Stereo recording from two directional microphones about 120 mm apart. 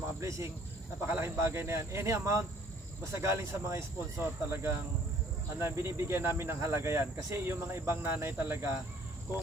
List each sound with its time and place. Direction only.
0.2 s speech: 25° right (ahead or behind)